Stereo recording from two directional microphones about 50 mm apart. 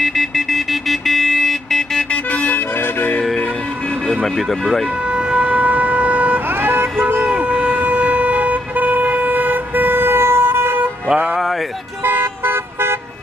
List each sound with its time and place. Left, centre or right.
0.0 s vehicle: centre
2.4 s music: left
4.1 s speech: centre
5.1 s shofar: right
6.6 s vehicle: right
7.2 s vehicle: right
12.0 s vehicle: right